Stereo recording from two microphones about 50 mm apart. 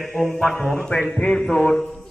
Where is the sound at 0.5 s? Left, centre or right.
Left.